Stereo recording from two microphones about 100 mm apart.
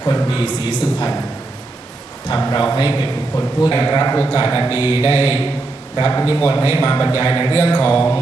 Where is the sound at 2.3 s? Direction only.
45° left (ahead or behind).